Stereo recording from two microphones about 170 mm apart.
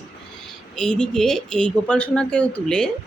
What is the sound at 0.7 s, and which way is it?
Speech, 5° left (ahead or behind).